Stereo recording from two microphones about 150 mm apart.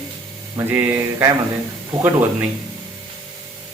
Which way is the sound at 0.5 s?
15° right (ahead or behind).